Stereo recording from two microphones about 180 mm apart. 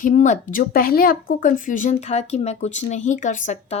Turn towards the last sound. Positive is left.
turn(degrees=45)  # may be behind; listen again after turning